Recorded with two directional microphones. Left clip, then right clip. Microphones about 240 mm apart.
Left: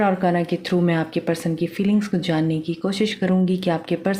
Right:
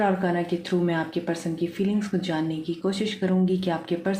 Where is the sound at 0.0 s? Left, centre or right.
Left.